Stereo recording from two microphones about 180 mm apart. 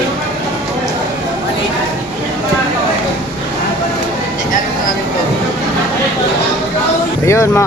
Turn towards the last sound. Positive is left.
turn(degrees=15)  # may be behind; listen again after turning